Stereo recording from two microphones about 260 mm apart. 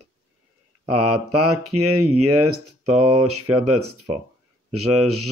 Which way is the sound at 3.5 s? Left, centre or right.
Right.